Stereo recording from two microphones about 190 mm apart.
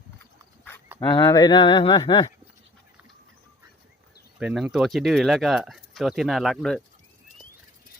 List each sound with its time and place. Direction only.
0.9 s speech: 25° left (ahead or behind)
4.4 s speech: 5° right (ahead or behind)